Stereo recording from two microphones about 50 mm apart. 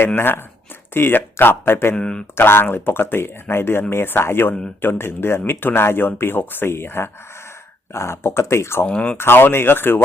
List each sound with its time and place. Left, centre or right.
0.9 s speech: left
2.0 s speech: centre
2.3 s speech: left
7.9 s speech: left
8.9 s speech: left
9.1 s speech: left